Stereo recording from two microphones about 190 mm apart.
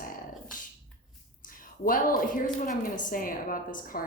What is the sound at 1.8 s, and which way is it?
Speech, 45° left (ahead or behind).